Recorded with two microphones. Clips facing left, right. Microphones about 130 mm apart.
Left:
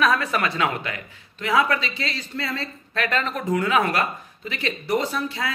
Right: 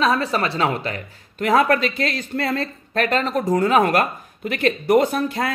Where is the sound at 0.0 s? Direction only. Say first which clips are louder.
Right 2 dB; 30° right (ahead or behind).